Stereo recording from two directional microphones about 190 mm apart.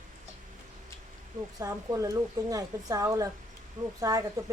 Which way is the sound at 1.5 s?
20° right (ahead or behind).